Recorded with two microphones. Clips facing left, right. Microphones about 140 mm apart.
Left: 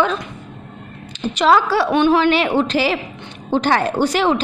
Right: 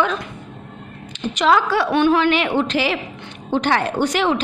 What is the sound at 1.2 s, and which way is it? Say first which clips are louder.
A woman's voice: left 2 dB; 35° left (ahead or behind).